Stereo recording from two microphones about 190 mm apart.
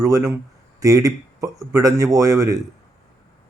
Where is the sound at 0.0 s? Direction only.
15° right (ahead or behind).